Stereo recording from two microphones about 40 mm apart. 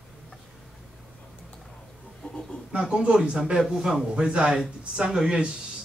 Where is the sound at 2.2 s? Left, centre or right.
Left.